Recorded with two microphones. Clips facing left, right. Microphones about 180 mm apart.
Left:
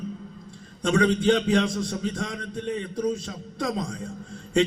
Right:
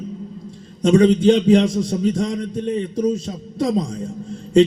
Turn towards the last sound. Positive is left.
turn(degrees=-25)  # may be behind; listen again after turning